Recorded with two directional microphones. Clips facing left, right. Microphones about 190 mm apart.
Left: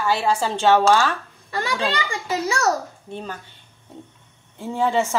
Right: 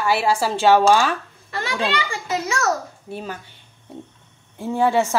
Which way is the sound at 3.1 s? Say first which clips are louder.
Right 2 dB; 5° right (ahead or behind).